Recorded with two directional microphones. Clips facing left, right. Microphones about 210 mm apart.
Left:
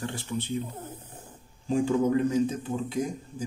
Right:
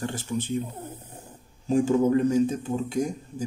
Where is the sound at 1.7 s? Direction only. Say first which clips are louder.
Right 3 dB; 45° right (ahead or behind).